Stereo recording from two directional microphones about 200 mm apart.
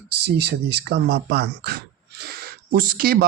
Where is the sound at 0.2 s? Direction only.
55° right (ahead or behind).